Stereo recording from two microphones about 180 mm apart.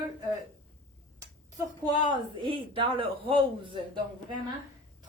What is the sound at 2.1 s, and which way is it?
A woman's voice, 30° right (ahead or behind).